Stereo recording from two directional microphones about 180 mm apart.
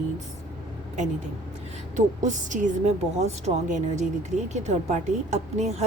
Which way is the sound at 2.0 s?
45° right (ahead or behind).